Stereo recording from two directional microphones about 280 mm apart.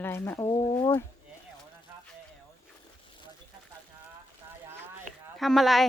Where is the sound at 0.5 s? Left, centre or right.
Centre.